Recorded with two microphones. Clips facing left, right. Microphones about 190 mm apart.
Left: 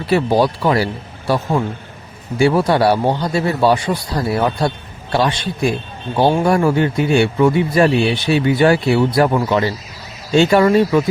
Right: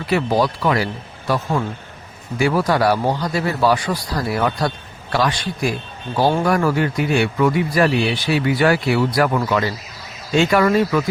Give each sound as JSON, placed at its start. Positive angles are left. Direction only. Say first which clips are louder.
{"t": 0.1, "sound": "speech", "louder": "left 3 dB", "side_deg": 30}
{"t": 1.6, "sound": "a man's voice", "louder": "left 3 dB", "side_deg": 20}